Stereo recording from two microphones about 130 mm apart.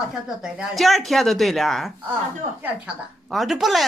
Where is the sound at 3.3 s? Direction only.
Centre (ahead or behind).